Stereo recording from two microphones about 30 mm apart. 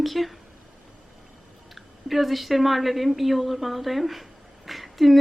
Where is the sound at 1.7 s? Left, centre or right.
Centre.